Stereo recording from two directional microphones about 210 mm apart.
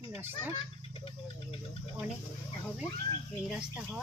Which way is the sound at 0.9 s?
25° left (ahead or behind).